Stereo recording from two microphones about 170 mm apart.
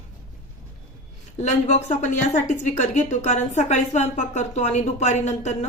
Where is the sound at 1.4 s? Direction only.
45° left (ahead or behind).